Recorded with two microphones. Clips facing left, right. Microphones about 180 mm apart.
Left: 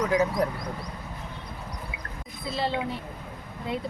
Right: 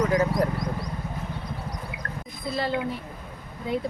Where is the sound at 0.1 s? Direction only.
5° left (ahead or behind).